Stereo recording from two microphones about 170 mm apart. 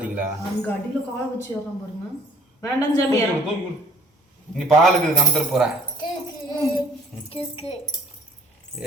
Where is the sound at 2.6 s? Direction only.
20° left (ahead or behind).